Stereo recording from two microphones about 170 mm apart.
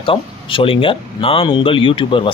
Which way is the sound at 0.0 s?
30° left (ahead or behind).